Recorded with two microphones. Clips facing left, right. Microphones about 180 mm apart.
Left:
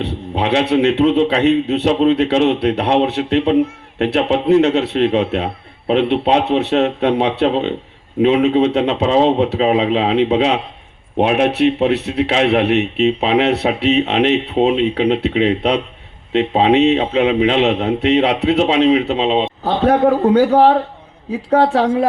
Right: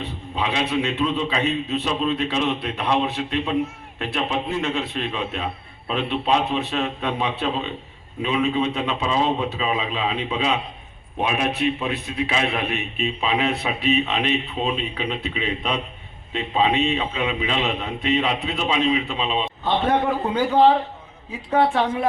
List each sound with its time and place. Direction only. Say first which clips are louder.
0.0 s a man's voice: left 7 dB; 70° left (ahead or behind)